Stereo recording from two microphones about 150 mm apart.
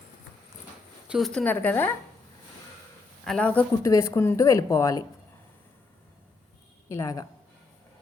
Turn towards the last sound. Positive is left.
turn(degrees=20)  # may be behind; listen again after turning